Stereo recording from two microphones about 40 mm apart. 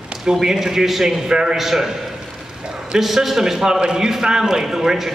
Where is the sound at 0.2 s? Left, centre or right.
Centre.